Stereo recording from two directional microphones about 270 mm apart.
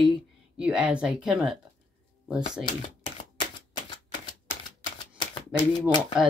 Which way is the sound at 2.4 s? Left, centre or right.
Centre.